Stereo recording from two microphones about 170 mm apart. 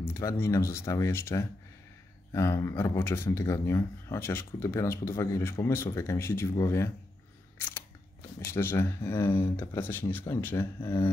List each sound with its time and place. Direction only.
0.0 s a man's voice: 15° left (ahead or behind)
7.5 s biting: 15° left (ahead or behind)
8.5 s a man's voice: 15° left (ahead or behind)